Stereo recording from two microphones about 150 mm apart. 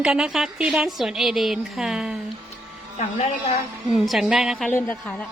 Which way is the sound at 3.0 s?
50° left (ahead or behind).